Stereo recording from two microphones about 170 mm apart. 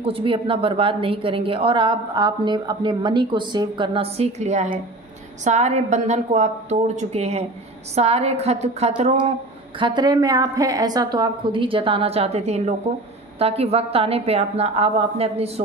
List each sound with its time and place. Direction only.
0.0 s a woman's voice: 30° right (ahead or behind)